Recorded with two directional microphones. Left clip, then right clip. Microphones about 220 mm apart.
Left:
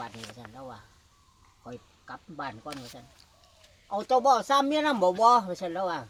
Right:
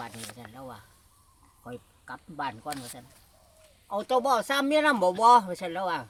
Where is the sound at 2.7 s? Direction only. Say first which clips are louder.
Right 3 dB; 45° right (ahead or behind).